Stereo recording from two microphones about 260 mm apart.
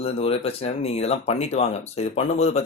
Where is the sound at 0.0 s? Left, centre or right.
Left.